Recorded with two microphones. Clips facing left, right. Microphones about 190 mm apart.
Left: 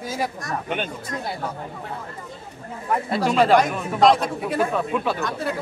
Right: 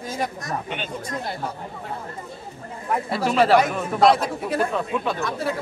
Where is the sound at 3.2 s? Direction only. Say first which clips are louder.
Even; 5° right (ahead or behind).